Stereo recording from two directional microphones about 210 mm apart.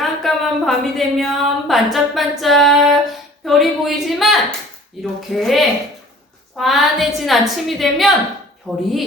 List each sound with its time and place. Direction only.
0.0 s speech: centre (ahead or behind)